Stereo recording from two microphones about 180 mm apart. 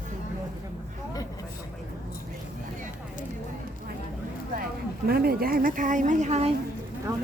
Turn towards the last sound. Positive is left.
turn(degrees=-20)  # may be behind; listen again after turning